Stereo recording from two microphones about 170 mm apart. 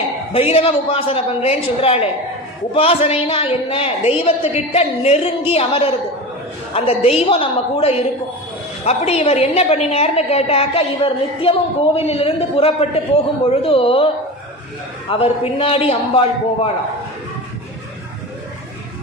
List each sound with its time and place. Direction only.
0.3 s a woman's voice: 35° left (ahead or behind)
15.1 s a woman's voice: 30° left (ahead or behind)